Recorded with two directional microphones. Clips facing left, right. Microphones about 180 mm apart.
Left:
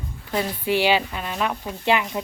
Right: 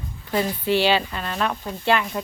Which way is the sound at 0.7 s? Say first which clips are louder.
Left 1 dB; 15° left (ahead or behind).